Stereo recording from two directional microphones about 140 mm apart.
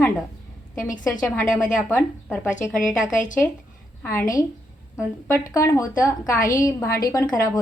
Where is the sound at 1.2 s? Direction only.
10° left (ahead or behind).